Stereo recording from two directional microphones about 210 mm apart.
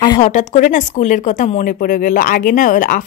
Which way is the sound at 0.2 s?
35° left (ahead or behind).